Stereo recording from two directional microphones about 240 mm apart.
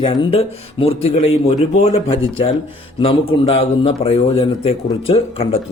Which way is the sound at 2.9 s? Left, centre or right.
Left.